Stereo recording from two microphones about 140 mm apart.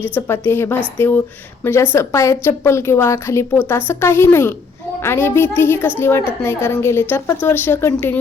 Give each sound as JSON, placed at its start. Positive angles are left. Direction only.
{"t": 0.0, "sound": "a woman's voice", "side_deg": 15}